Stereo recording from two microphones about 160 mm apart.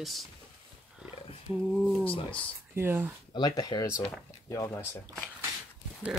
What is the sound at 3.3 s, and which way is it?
Speech, 25° left (ahead or behind).